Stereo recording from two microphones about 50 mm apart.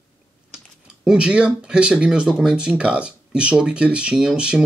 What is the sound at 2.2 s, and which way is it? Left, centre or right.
Speech, centre.